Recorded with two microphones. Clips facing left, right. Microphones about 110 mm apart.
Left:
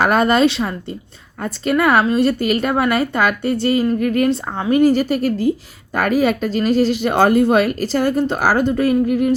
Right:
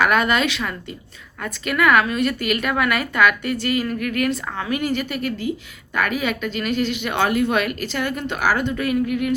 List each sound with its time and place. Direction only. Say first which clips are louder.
0.0 s a woman's voice: left 5 dB; 35° left (ahead or behind)